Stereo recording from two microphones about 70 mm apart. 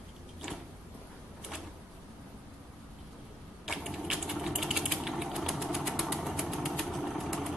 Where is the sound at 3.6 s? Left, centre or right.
Centre.